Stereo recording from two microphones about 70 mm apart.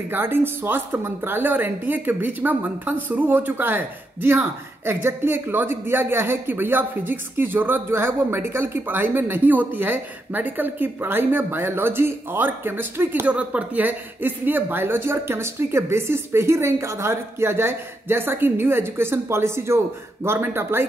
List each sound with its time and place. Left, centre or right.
0.1 s speech: right
13.3 s speech: centre; by 20.8 s right